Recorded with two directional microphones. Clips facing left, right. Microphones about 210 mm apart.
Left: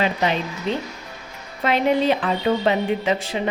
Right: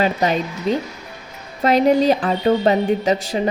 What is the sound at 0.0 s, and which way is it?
Speech, 40° right (ahead or behind).